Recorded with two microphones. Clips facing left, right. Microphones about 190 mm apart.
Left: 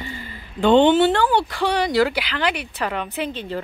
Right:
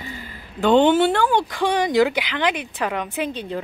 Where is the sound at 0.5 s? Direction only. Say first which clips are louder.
Left 1 dB; 5° right (ahead or behind).